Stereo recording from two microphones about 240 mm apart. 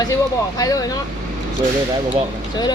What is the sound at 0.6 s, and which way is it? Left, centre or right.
Speech, centre.